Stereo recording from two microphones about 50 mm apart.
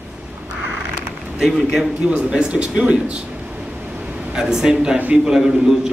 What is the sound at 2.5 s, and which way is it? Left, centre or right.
Speech, right.